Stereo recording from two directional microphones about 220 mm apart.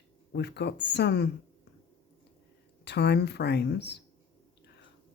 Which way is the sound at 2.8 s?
50° left (ahead or behind).